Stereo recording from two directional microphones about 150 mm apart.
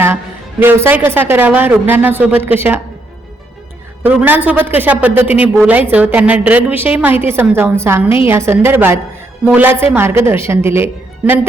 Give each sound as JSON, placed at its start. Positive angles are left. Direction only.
{"t": 0.6, "sound": "a woman's voice", "side_deg": -15}
{"t": 4.0, "sound": "a woman's voice", "side_deg": -10}